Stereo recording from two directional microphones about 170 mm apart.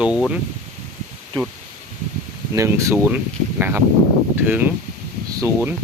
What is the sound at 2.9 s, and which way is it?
Speech, 5° right (ahead or behind).